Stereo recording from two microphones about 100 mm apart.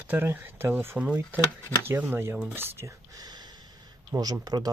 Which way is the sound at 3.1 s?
40° right (ahead or behind).